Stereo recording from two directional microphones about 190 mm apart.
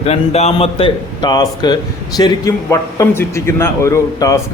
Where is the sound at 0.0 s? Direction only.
35° left (ahead or behind).